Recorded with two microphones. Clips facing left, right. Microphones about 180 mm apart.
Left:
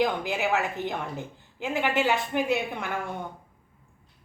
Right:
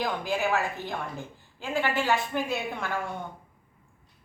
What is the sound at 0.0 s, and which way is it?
A woman's voice, 20° left (ahead or behind).